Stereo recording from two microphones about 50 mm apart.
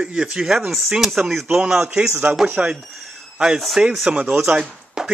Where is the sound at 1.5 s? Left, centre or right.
Centre.